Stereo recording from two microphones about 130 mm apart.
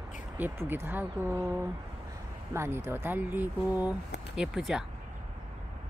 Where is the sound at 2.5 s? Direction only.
20° right (ahead or behind); by 4.8 s centre (ahead or behind).